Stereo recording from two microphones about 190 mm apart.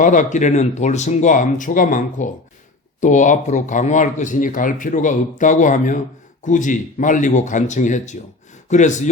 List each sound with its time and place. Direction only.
0.0 s speech: 40° left (ahead or behind)